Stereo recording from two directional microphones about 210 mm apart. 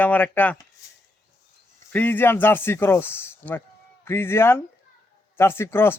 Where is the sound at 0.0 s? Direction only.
10° left (ahead or behind).